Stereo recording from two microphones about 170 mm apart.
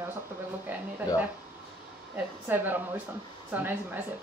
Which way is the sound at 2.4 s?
10° right (ahead or behind).